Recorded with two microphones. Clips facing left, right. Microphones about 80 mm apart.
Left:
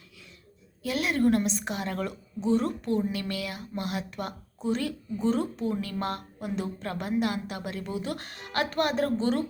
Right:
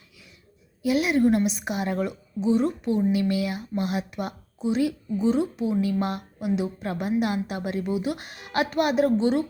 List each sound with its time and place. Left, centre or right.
0.8 s speech: centre
2.0 s a woman's voice: centre